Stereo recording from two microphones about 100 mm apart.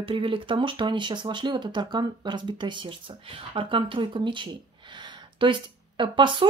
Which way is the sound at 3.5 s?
60° right (ahead or behind).